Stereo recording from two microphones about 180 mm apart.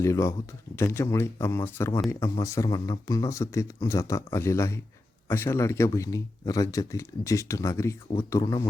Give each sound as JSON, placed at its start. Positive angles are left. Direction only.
{"t": 0.0, "sound": "speech", "side_deg": 15}
{"t": 8.0, "sound": "speech", "side_deg": 30}
{"t": 8.3, "sound": "speech", "side_deg": 15}